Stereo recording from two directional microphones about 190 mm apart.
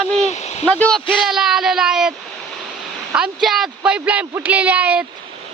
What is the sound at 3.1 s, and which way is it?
Speech, 5° right (ahead or behind).